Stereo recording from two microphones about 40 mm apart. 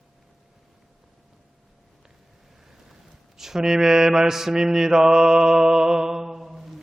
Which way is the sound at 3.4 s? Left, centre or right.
Centre.